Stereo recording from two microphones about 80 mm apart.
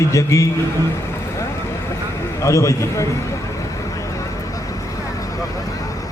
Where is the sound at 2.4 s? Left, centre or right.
Left.